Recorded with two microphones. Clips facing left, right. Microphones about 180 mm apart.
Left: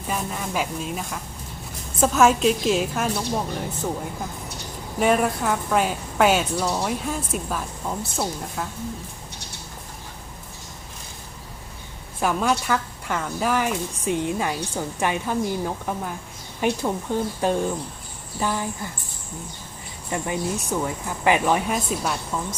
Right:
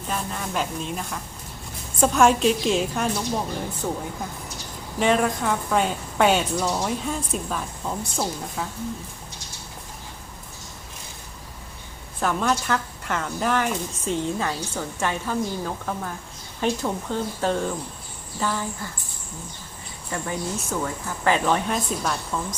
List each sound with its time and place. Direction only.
0.1 s speech: 5° left (ahead or behind)
12.2 s a woman's voice: 10° left (ahead or behind)
20.1 s a woman's voice: 20° left (ahead or behind)